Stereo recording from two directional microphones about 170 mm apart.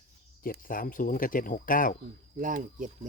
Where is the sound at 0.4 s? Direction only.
55° left (ahead or behind).